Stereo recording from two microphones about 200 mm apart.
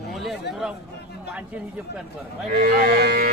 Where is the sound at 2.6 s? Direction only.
50° right (ahead or behind).